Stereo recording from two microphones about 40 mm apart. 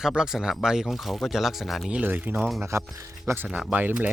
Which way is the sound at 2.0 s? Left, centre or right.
Right.